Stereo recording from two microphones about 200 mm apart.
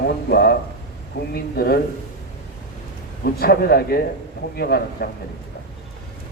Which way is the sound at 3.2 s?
50° left (ahead or behind).